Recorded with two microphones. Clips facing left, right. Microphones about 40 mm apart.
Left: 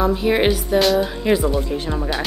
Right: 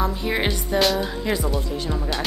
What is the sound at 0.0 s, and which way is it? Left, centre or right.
Speech, centre.